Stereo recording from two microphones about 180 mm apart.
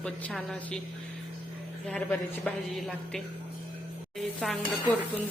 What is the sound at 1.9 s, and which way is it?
Speech, 5° left (ahead or behind).